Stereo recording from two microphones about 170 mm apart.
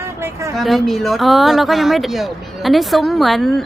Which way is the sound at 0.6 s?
Centre (ahead or behind).